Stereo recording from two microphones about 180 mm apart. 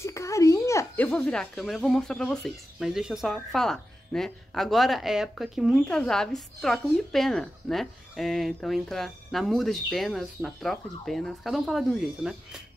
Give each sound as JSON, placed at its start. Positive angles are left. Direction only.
{"t": 0.0, "sound": "speech", "side_deg": 15}